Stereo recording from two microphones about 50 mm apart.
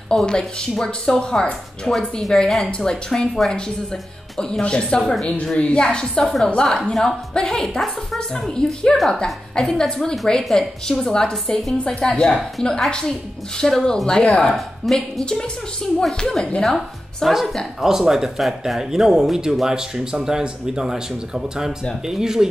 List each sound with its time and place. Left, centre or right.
0.1 s speech: centre
8.5 s speech: centre
8.9 s a woman's voice: centre
9.2 s speech: centre
16.6 s speech: centre
17.7 s speech: centre